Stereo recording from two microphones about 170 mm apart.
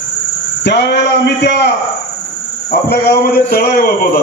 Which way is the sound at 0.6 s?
80° left.